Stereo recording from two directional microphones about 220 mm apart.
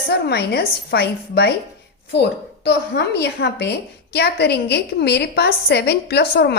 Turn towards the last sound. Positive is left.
turn(degrees=50)  # may be behind; listen again after turning